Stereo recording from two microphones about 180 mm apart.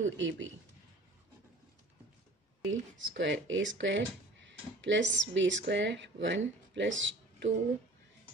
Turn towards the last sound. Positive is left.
turn(degrees=-90)